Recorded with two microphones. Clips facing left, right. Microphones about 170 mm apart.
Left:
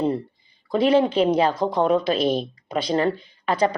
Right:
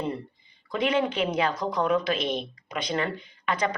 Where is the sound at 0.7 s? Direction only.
35° left (ahead or behind).